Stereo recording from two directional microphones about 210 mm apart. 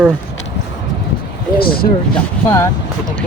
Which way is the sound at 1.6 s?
45° left (ahead or behind).